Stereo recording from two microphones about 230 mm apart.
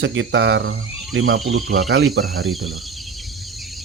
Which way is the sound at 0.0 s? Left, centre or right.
Right.